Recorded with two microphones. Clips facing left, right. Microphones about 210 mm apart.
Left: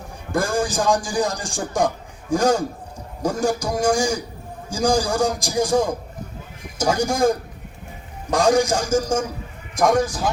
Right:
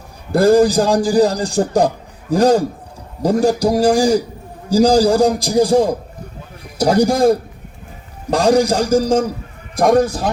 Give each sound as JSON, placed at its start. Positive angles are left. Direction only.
{"t": 0.3, "sound": "a man's voice", "side_deg": -35}
{"t": 10.0, "sound": "speech", "side_deg": -60}